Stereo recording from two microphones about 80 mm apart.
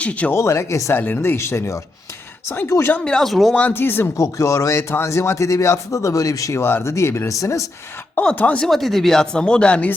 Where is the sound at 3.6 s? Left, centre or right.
Left.